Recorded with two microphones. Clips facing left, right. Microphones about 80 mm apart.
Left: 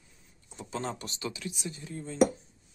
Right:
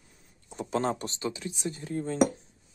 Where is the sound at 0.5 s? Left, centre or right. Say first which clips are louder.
Right 7 dB; right.